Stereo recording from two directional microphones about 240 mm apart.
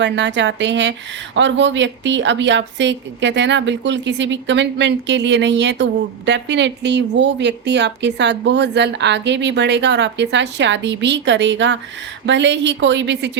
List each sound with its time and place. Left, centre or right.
0.0 s speech: right